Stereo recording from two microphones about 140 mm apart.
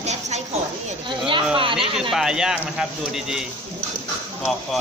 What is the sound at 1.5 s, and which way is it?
Speech, 40° right (ahead or behind).